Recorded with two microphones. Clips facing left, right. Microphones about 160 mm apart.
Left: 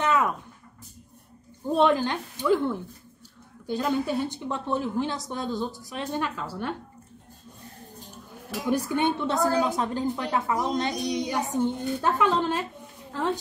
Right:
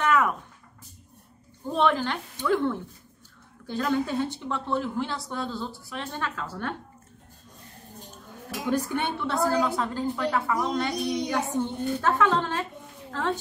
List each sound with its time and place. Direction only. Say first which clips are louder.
0.0 s a sound: right 1 dB; 20° left (ahead or behind)
1.8 s a woman's voice: left 2 dB; 15° left (ahead or behind)
8.6 s a woman's voice: left 2 dB; 15° left (ahead or behind)